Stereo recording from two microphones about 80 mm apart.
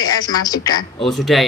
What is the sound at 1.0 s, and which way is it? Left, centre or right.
Speech, centre.